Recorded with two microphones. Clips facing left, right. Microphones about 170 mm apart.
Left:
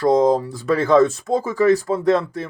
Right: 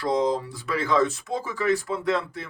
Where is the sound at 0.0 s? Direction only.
45° left (ahead or behind).